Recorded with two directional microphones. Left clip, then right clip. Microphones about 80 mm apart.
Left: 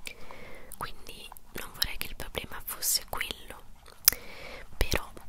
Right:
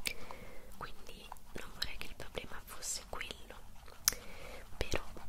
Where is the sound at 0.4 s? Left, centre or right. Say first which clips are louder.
Left 8 dB; left.